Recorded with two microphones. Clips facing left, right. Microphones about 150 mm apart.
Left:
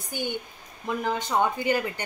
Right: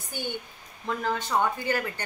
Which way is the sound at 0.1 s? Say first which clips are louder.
Left 3 dB; 15° left (ahead or behind).